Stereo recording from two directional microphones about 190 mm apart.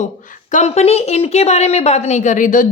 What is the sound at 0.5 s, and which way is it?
A woman's voice, 35° left (ahead or behind).